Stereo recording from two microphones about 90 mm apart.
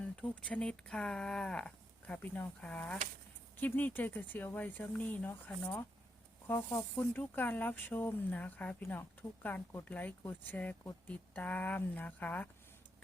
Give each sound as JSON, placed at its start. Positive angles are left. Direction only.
{"t": 0.0, "sound": "speech", "side_deg": 15}